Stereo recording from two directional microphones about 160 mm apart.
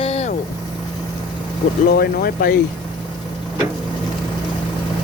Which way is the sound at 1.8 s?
70° left (ahead or behind).